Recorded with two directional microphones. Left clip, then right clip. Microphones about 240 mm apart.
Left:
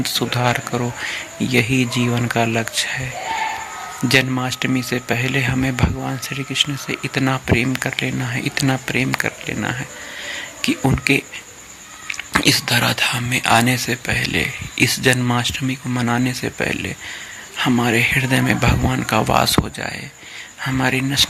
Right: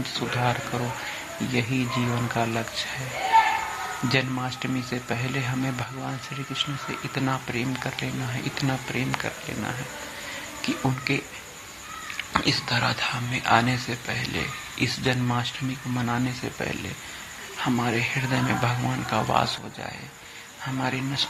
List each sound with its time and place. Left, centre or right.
0.0 s speech: left
1.5 s speech: left
4.1 s speech: left
12.3 s speech: left